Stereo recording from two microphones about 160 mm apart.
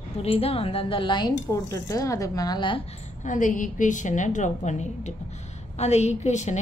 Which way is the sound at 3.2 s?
50° left (ahead or behind).